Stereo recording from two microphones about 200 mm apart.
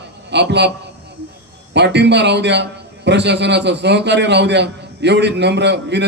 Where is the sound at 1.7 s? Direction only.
60° right (ahead or behind).